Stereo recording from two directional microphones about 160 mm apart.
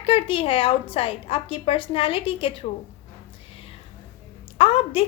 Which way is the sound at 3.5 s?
35° left (ahead or behind).